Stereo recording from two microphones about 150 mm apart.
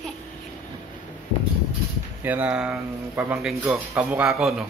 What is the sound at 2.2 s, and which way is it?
Speech, 10° right (ahead or behind).